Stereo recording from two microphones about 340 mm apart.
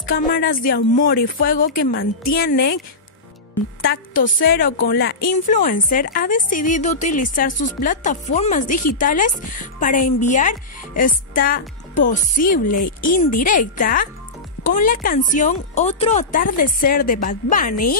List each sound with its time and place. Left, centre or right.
0.0 s a woman's voice: left
3.8 s a woman's voice: left